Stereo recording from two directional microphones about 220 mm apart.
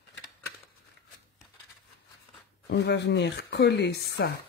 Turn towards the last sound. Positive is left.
turn(degrees=50)  # may be behind; listen again after turning